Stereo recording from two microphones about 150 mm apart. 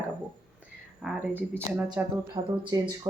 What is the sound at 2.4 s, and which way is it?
Speech, 35° right (ahead or behind).